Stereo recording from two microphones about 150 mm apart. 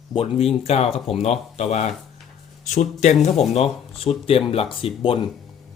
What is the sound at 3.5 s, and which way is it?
Speech, 40° left (ahead or behind).